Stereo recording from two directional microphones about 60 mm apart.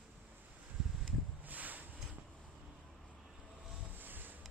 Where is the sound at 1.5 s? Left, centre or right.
Right.